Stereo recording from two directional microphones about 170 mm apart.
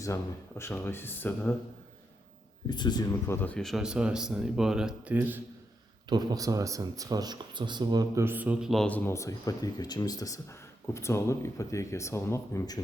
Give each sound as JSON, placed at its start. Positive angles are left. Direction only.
{"t": 0.0, "sound": "speech", "side_deg": 15}
{"t": 2.6, "sound": "speech", "side_deg": 25}
{"t": 3.4, "sound": "speech", "side_deg": 5}
{"t": 6.1, "sound": "speech", "side_deg": -25}
{"t": 9.0, "sound": "speech", "side_deg": 15}